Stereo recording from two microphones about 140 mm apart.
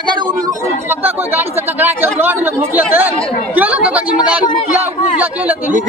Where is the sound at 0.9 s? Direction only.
15° right (ahead or behind).